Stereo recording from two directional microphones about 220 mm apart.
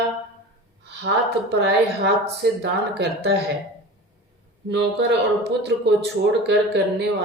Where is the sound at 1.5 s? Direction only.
50° right (ahead or behind).